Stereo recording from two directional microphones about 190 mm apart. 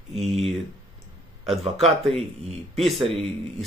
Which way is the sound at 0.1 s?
30° right (ahead or behind).